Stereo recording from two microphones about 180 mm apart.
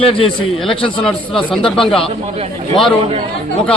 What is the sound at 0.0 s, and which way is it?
Speech, 30° left (ahead or behind).